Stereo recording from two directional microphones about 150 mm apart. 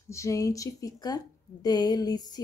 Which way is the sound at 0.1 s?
20° left (ahead or behind).